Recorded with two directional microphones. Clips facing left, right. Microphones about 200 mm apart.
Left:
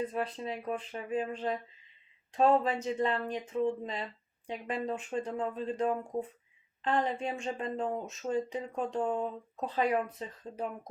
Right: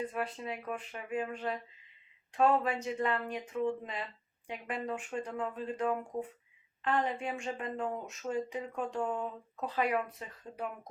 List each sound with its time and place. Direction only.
0.1 s speech: 30° left (ahead or behind)